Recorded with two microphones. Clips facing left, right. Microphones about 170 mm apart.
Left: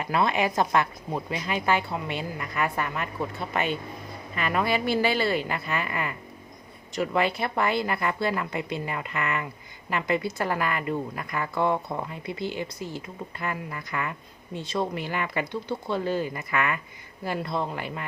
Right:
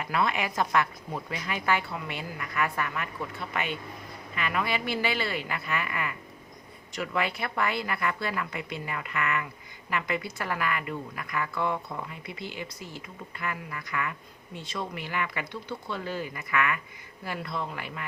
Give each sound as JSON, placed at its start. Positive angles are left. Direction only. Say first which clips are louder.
{"t": 0.0, "sound": "speech", "louder": "left 4 dB", "side_deg": 30}